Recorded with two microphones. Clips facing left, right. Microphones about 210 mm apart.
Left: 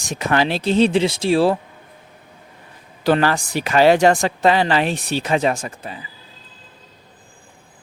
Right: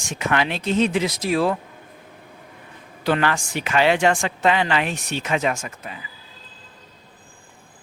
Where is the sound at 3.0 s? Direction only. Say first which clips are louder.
Left 4 dB; 35° left (ahead or behind).